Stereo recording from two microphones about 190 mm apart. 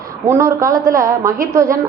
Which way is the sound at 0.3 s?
15° right (ahead or behind).